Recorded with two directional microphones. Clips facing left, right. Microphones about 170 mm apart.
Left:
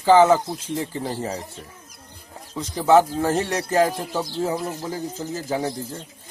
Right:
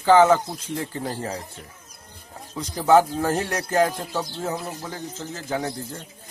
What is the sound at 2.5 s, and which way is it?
Speech, centre (ahead or behind).